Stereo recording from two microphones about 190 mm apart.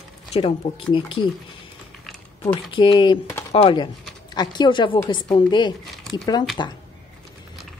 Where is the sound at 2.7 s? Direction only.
25° left (ahead or behind).